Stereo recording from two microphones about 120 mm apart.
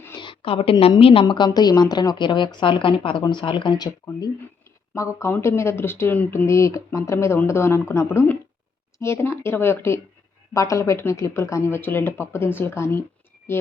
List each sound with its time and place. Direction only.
0.2 s a woman's voice: 45° left (ahead or behind)
1.5 s a woman's voice: 35° left (ahead or behind)
4.9 s speech: 25° left (ahead or behind)